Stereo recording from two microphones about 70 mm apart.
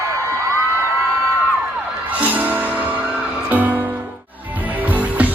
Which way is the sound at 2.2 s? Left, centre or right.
Right.